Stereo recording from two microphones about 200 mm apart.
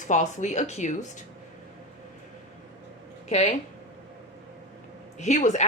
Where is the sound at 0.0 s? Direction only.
40° left (ahead or behind).